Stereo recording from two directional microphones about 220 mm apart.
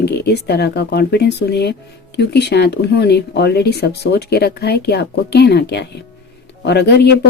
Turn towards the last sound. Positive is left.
turn(degrees=50)  # may be behind; listen again after turning